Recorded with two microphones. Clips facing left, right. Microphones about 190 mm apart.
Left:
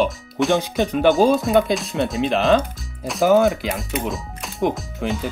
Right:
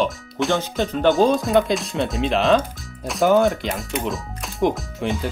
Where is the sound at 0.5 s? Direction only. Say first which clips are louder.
Left 3 dB; 15° left (ahead or behind).